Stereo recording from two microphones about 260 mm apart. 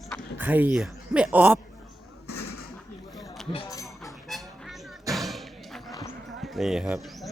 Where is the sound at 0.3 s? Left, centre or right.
Centre.